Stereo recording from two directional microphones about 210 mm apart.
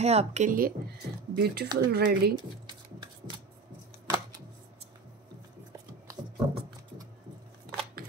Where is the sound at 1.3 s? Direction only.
50° right (ahead or behind).